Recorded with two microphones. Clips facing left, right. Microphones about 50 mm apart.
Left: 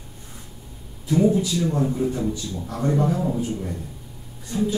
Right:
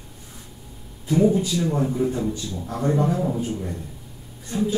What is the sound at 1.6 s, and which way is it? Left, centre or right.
A man's voice, centre.